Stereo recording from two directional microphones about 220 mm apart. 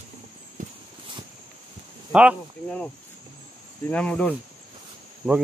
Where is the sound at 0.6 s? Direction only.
35° right (ahead or behind).